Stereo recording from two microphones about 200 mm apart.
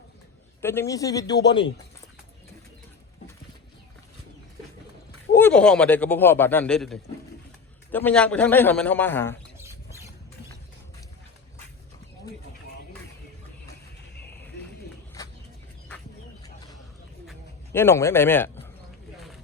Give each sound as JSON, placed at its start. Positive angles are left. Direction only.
{"t": 0.6, "sound": "a man's voice", "side_deg": 10}
{"t": 5.3, "sound": "a man's voice", "side_deg": 10}
{"t": 9.6, "sound": "rodents", "side_deg": -15}
{"t": 15.2, "sound": "a sound", "side_deg": 20}
{"t": 17.7, "sound": "a man's voice", "side_deg": 10}